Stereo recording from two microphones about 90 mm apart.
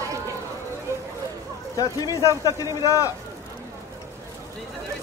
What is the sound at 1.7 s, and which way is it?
Speech, 40° left (ahead or behind).